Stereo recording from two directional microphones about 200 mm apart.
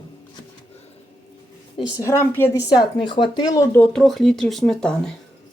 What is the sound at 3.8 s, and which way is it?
Speech, centre (ahead or behind).